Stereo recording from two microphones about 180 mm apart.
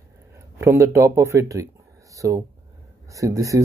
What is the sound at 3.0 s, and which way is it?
Speech, 20° right (ahead or behind).